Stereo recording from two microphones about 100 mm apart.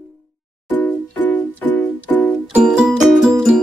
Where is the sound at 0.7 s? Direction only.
15° left (ahead or behind).